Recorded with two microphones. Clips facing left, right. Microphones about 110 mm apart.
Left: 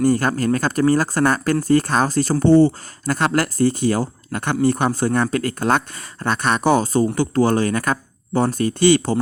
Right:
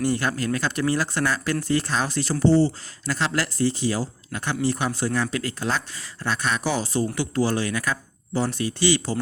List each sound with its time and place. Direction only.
0.0 s speech: 45° left (ahead or behind)